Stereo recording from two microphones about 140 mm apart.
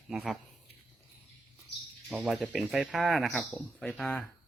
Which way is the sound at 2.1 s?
5° right (ahead or behind).